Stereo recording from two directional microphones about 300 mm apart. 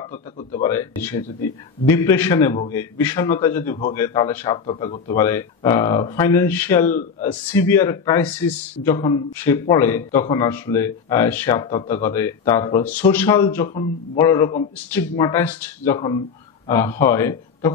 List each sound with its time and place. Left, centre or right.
0.5 s a man's voice: centre
6.9 s a man's voice: left
7.5 s a man's voice: centre